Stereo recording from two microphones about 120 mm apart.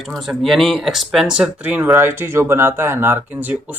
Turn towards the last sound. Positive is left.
turn(degrees=-15)  # may be behind; listen again after turning